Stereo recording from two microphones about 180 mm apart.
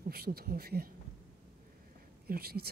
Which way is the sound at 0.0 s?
60° right (ahead or behind).